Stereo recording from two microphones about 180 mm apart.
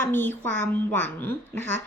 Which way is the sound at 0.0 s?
10° left (ahead or behind).